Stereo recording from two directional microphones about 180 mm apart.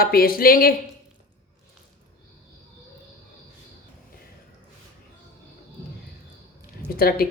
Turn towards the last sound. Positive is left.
turn(degrees=55)  # may be behind; listen again after turning